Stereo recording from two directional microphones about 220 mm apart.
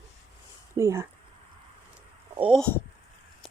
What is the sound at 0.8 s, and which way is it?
Speech, 15° right (ahead or behind).